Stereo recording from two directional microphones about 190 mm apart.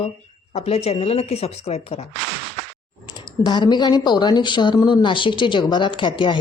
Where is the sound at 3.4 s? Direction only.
25° left (ahead or behind).